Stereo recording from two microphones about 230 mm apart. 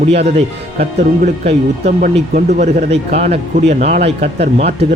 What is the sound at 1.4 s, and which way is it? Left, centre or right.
Speech, right.